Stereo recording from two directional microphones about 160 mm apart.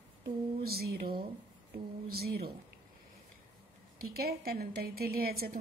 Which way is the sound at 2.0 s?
75° right (ahead or behind).